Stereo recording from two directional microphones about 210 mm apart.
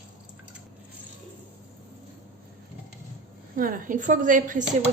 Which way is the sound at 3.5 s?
40° right (ahead or behind).